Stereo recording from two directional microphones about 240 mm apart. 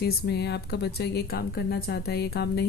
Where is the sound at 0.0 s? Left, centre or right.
Left.